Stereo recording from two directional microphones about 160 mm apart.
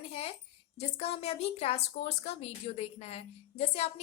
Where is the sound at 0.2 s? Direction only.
40° left (ahead or behind).